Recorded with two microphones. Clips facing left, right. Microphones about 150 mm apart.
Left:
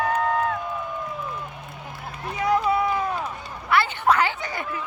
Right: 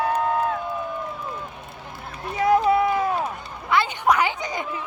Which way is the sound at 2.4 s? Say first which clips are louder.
Right 4 dB; 25° right (ahead or behind).